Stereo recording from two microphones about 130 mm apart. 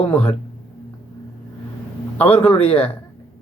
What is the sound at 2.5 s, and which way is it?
Speech, 45° left (ahead or behind).